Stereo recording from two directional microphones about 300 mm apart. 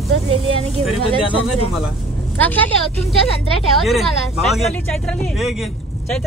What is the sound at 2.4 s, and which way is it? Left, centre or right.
Speech, centre.